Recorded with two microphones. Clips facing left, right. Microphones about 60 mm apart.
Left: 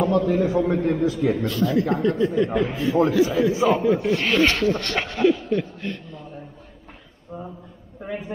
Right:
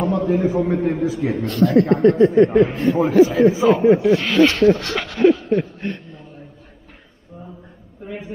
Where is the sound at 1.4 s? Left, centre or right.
Right.